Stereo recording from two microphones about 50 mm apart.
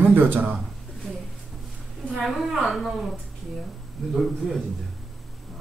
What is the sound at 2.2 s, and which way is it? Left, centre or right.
Speech, centre.